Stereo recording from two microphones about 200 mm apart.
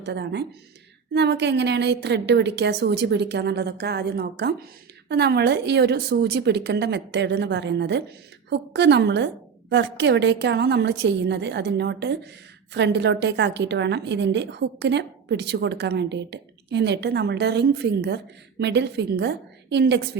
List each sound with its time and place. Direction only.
0.0 s a woman's voice: 60° right (ahead or behind)